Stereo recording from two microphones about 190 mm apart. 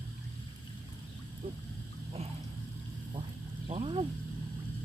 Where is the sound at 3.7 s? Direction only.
30° right (ahead or behind).